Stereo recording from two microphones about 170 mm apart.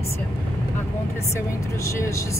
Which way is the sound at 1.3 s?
15° left (ahead or behind).